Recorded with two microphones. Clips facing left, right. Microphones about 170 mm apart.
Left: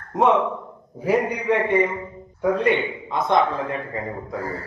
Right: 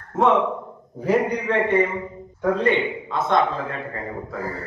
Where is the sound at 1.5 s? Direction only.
15° left (ahead or behind).